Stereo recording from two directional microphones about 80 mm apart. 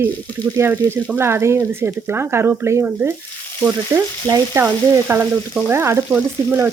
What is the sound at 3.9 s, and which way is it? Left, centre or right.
Speech, right.